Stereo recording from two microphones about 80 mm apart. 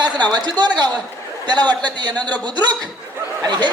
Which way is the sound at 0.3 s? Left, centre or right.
Right.